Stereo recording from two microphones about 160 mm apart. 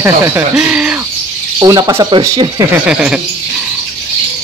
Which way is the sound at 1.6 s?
25° right (ahead or behind).